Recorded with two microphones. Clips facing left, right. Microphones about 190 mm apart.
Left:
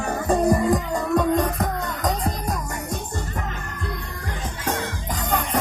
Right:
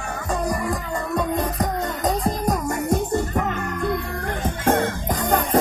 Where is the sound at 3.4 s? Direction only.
55° right (ahead or behind).